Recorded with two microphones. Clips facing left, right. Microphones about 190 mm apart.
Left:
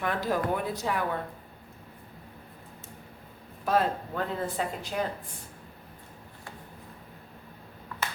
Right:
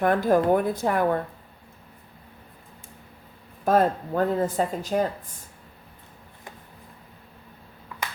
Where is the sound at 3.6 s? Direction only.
45° right (ahead or behind).